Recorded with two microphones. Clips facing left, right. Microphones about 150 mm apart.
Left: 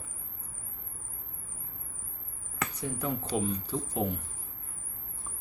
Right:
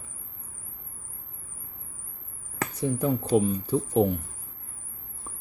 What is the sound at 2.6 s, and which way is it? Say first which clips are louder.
Speech: right 7 dB; 40° right (ahead or behind).